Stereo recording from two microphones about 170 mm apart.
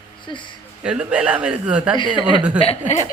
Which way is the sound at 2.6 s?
40° left (ahead or behind).